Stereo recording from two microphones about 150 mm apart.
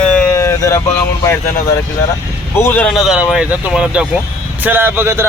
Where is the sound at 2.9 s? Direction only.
Centre (ahead or behind).